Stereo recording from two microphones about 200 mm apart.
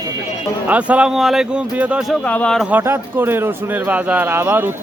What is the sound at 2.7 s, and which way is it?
A man's voice, 10° right (ahead or behind).